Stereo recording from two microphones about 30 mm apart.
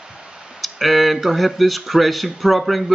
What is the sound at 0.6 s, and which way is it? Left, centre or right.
Speech, centre.